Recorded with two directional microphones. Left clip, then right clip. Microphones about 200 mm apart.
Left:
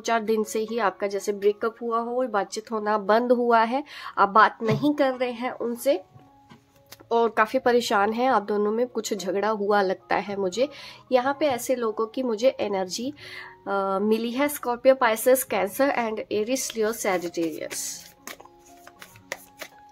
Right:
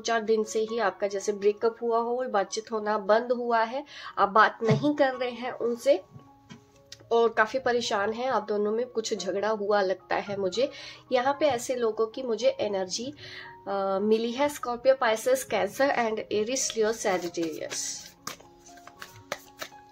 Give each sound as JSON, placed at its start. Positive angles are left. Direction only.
{"t": 0.0, "sound": "speech", "side_deg": 40}
{"t": 7.1, "sound": "speech", "side_deg": 35}